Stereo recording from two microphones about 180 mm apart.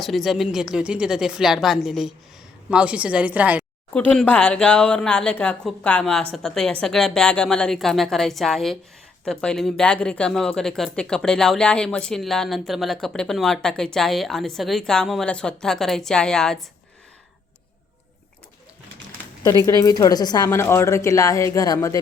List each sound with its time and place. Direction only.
0.0 s a woman's voice: centre (ahead or behind)
3.9 s speech: 5° left (ahead or behind)
19.6 s a woman's voice: 20° left (ahead or behind)